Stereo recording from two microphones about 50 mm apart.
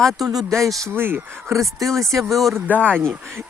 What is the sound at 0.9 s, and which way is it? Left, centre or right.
Speech, right.